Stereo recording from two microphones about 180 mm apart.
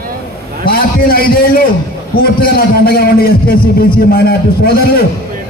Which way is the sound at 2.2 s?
55° left (ahead or behind).